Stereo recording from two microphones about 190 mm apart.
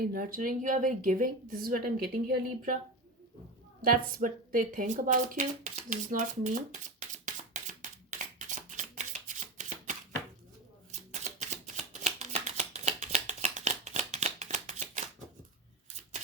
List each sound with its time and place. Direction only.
0.0 s speech: 50° right (ahead or behind)
3.8 s speech: 50° right (ahead or behind)
7.3 s a sound: 40° right (ahead or behind)
8.4 s shuffling cards: 40° right (ahead or behind)
11.1 s shuffling cards: 40° right (ahead or behind)